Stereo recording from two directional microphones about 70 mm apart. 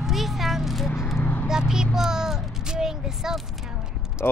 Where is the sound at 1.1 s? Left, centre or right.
Left.